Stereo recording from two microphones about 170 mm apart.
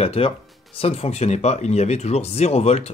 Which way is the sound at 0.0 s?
35° left (ahead or behind).